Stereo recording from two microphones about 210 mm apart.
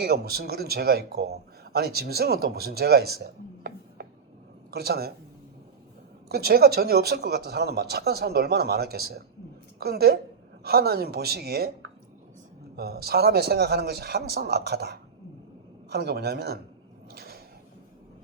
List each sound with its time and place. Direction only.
0.0 s speech: 50° right (ahead or behind)
6.2 s speech: 45° right (ahead or behind)
12.7 s speech: 50° right (ahead or behind)
17.1 s a sound: 45° right (ahead or behind)